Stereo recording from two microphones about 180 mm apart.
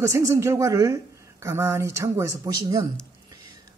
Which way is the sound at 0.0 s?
15° right (ahead or behind).